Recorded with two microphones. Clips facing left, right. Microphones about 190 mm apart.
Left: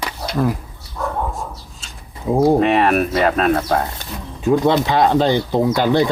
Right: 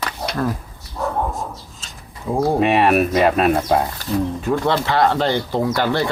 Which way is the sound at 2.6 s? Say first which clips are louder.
Even; 5° right (ahead or behind).